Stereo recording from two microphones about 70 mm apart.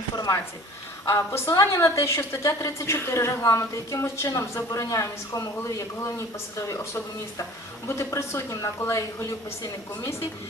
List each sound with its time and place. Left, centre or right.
1.0 s a woman's voice: left